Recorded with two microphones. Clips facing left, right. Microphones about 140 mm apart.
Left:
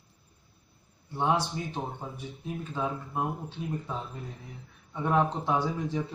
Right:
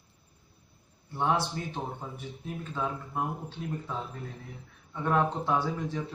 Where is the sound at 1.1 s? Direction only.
15° left (ahead or behind).